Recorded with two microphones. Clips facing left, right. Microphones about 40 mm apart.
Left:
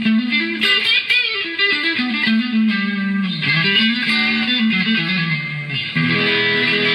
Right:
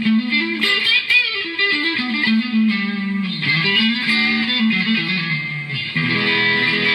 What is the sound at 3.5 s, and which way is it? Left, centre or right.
Music, centre.